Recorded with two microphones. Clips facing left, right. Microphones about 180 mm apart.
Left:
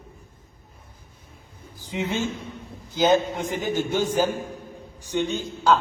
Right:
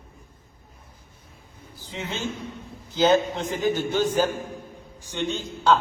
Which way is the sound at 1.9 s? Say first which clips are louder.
Left 4 dB; 10° left (ahead or behind).